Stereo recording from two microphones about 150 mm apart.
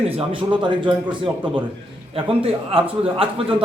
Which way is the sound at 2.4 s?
40° right (ahead or behind).